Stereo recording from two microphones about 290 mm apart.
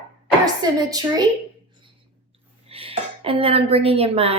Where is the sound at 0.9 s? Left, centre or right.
Centre.